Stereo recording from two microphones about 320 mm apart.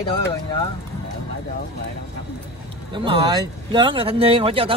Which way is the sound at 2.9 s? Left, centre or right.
Centre.